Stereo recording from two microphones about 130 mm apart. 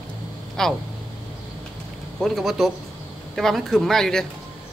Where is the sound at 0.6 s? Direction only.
5° left (ahead or behind).